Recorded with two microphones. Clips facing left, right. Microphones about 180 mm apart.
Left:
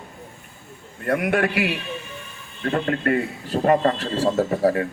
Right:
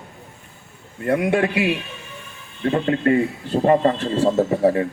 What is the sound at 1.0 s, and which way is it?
A man's voice, 20° right (ahead or behind).